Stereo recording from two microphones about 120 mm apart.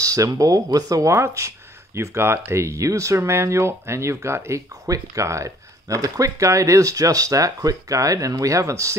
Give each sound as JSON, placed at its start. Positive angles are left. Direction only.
{"t": 0.0, "sound": "speech", "side_deg": -30}